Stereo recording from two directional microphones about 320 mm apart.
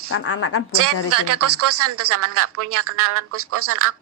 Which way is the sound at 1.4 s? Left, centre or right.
Right.